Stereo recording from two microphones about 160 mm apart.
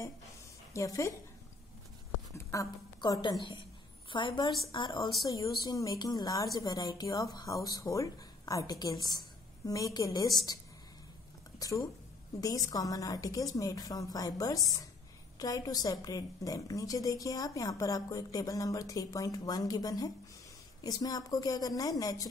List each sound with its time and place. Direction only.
0.7 s a woman's voice: 20° left (ahead or behind)
2.3 s a woman's voice: 20° left (ahead or behind)
11.6 s a woman's voice: 20° left (ahead or behind)